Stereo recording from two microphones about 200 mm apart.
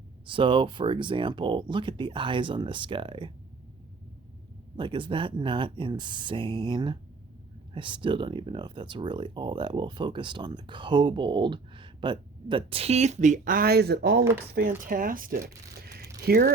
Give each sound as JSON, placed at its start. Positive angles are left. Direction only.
{"t": 0.3, "sound": "speech", "side_deg": -25}
{"t": 4.8, "sound": "speech", "side_deg": -25}
{"t": 14.8, "sound": "speech", "side_deg": -45}